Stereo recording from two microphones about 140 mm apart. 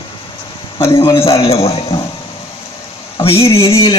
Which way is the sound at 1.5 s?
45° left (ahead or behind).